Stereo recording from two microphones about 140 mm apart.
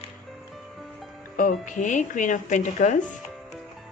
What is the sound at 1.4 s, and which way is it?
Speech, 70° left (ahead or behind).